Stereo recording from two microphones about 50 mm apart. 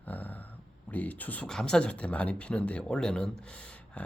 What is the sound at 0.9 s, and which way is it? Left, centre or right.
Speech, left.